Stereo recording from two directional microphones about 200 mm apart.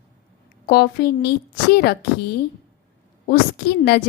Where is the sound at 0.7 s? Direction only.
50° left (ahead or behind).